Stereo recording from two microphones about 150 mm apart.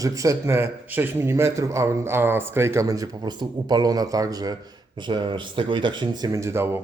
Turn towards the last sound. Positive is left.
turn(degrees=-15)  # may be behind; listen again after turning